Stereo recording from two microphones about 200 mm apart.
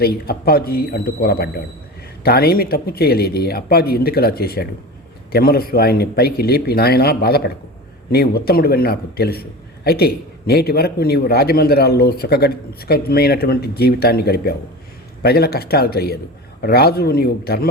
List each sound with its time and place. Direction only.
0.0 s a man's voice: 50° left (ahead or behind)